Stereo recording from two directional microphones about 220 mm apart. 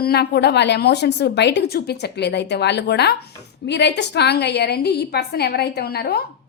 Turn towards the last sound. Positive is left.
turn(degrees=45)  # may be behind; listen again after turning